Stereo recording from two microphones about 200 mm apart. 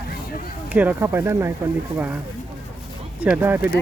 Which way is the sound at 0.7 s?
10° right (ahead or behind).